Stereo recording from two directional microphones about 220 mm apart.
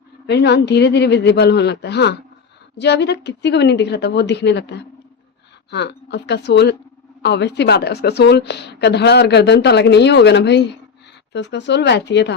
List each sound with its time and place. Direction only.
0.3 s a woman's voice: 50° left (ahead or behind)